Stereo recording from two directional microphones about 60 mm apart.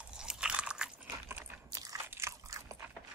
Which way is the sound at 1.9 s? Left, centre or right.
Right.